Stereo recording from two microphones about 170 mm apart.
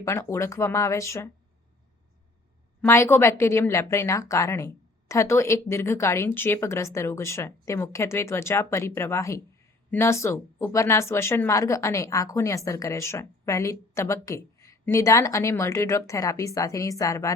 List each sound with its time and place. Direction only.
0.0 s speech: 15° left (ahead or behind)
2.8 s speech: 15° left (ahead or behind)